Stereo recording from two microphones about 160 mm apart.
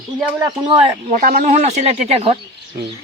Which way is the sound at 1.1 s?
55° right (ahead or behind).